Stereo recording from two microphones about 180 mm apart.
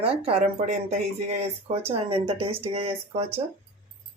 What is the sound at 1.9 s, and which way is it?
Speech, 30° right (ahead or behind).